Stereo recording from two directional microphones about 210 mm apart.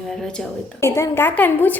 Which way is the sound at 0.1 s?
5° left (ahead or behind).